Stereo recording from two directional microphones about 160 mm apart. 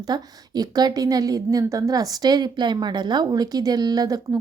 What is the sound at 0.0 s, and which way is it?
A woman's voice, 25° right (ahead or behind).